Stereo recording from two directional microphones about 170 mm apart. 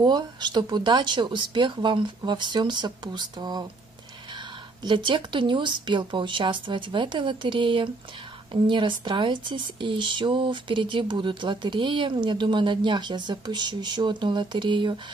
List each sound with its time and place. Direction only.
0.0 s speech: 25° right (ahead or behind)
4.8 s speech: 30° right (ahead or behind)